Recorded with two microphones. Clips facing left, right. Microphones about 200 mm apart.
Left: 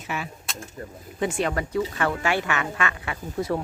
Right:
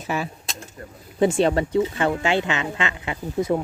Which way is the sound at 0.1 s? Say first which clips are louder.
Right 5 dB; 35° right (ahead or behind).